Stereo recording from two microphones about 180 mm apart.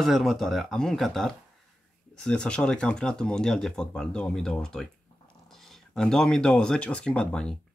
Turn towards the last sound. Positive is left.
turn(degrees=5)  # may be behind; listen again after turning